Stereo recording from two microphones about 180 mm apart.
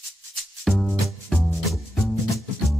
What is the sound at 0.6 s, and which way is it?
Music, centre (ahead or behind).